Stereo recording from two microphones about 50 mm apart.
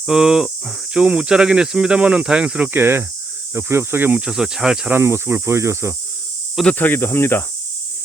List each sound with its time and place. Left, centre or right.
0.0 s speech: centre
2.7 s speech: right
4.3 s speech: centre
4.9 s speech: right
6.7 s speech: left